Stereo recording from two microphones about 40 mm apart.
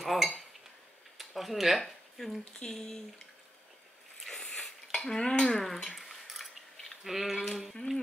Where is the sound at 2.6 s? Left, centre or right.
Centre.